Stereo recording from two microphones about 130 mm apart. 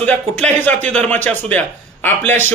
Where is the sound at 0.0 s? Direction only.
10° left (ahead or behind).